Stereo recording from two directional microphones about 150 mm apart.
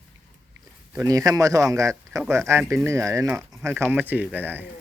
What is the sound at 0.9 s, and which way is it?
Speech, 25° right (ahead or behind).